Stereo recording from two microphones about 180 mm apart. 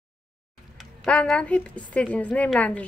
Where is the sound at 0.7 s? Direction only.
5° left (ahead or behind).